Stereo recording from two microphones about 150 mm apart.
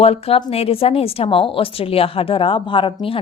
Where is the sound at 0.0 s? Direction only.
40° left (ahead or behind).